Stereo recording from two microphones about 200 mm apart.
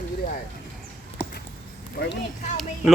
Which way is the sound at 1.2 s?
10° left (ahead or behind).